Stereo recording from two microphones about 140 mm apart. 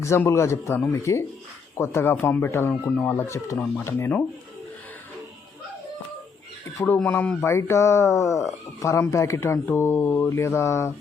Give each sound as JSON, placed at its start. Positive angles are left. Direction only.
{"t": 0.0, "sound": "speech", "side_deg": 20}
{"t": 6.7, "sound": "speech", "side_deg": 10}